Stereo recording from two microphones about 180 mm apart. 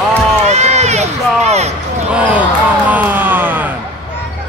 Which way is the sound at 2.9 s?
10° right (ahead or behind).